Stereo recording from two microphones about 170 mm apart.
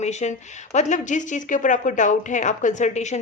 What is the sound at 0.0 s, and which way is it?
Speech, 40° left (ahead or behind).